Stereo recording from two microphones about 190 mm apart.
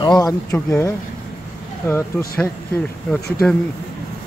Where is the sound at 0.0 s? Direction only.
20° left (ahead or behind); by 3.2 s 5° left (ahead or behind).